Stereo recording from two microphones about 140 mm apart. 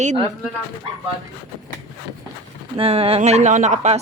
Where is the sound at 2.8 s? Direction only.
45° right (ahead or behind).